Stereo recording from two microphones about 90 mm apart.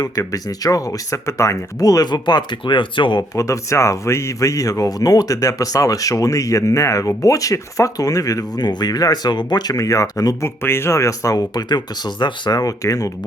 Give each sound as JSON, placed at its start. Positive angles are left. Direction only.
{"t": 0.0, "sound": "speech", "side_deg": 40}
{"t": 3.2, "sound": "speech", "side_deg": 35}
{"t": 10.6, "sound": "speech", "side_deg": 25}